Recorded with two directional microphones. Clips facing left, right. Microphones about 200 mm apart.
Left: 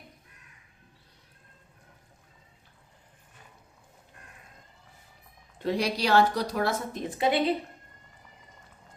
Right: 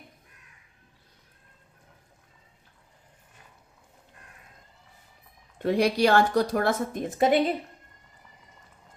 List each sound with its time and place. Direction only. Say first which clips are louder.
5.5 s a woman's voice: right 5 dB; 55° right (ahead or behind)